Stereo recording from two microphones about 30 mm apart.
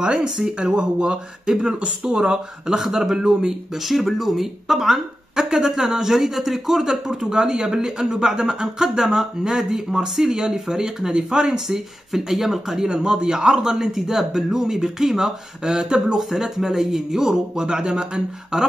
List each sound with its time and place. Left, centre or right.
0.0 s speech: right
0.6 s speech: right
1.8 s speech: right
2.2 s speech: right
2.8 s speech: centre
3.2 s speech: right
3.8 s speech: centre; by 11.6 s right
11.7 s speech: centre
12.9 s speech: right
13.7 s speech: centre
15.6 s speech: right
16.2 s speech: centre
17.6 s speech: right